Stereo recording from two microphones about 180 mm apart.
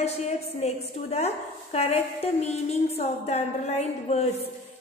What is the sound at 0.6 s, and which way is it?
A woman's voice, 35° left (ahead or behind).